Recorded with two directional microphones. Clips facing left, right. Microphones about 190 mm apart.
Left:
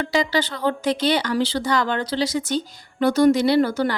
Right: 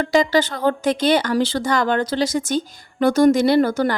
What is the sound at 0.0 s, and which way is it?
Speech, 50° right (ahead or behind).